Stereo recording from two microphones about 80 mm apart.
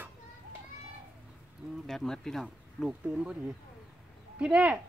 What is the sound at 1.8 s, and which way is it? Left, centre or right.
Speech, centre.